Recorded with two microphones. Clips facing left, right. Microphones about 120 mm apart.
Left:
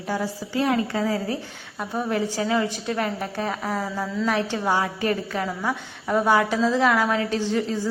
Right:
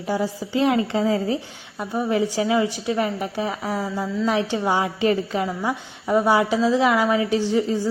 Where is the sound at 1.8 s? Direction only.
5° right (ahead or behind).